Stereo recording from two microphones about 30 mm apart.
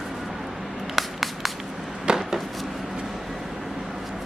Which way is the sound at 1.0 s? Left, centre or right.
Centre.